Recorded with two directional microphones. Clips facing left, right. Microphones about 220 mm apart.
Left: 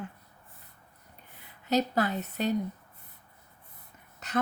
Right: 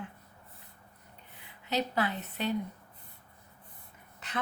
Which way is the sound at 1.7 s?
45° left (ahead or behind).